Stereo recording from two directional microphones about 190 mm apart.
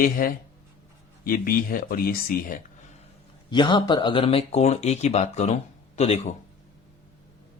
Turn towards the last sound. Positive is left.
turn(degrees=35)  # may be behind; listen again after turning